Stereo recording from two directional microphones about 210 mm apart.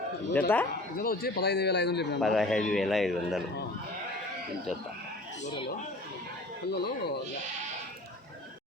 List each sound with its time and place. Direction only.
0.3 s speech: 10° left (ahead or behind)
0.9 s a man's voice: 45° left (ahead or behind)
2.2 s speech: centre (ahead or behind)
6.7 s a man's voice: 50° left (ahead or behind)